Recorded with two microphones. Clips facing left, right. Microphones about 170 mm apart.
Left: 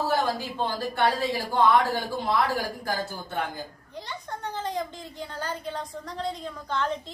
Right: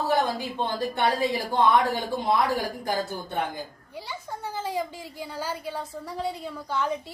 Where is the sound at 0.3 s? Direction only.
20° right (ahead or behind).